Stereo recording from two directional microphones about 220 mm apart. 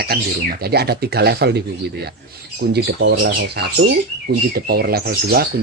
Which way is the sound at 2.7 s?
50° right (ahead or behind).